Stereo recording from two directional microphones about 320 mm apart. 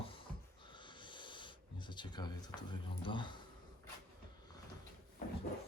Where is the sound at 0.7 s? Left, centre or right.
Centre.